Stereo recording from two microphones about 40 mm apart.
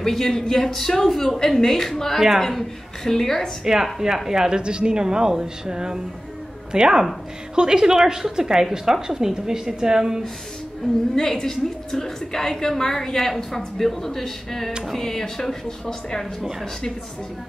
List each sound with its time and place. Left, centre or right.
0.0 s a woman's voice: centre
3.6 s speech: centre
11.1 s a woman's voice: centre